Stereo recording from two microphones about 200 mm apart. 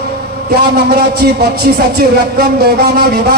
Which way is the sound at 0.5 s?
55° right (ahead or behind).